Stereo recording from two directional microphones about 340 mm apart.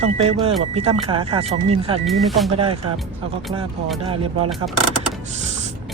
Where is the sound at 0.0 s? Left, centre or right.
Centre.